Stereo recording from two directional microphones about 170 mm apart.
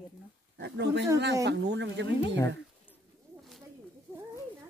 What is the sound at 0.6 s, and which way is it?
A woman's voice, 90° right.